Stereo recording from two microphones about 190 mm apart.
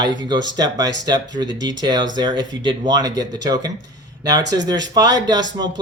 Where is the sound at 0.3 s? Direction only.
20° right (ahead or behind).